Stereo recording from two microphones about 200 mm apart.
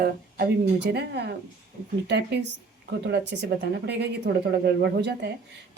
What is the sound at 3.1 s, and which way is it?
A woman's voice, 55° right (ahead or behind).